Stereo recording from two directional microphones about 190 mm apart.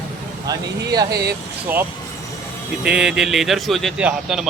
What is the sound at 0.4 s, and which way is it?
Speech, 20° right (ahead or behind).